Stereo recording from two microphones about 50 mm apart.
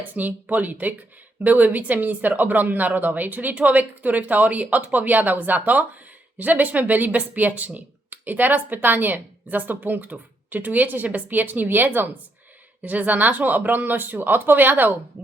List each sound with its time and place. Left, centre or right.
0.1 s speech: right